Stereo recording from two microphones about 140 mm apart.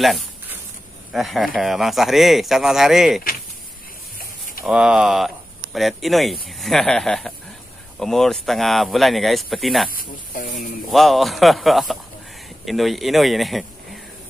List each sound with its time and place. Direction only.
0.0 s speech: centre (ahead or behind)
4.2 s a sound: 90° left
4.6 s speech: 5° right (ahead or behind)
9.8 s speech: 85° left
10.9 s speech: centre (ahead or behind)